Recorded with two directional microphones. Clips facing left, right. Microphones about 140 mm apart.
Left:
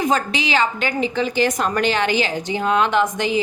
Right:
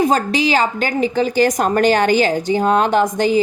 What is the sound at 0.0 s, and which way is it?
A woman's voice, 35° right (ahead or behind).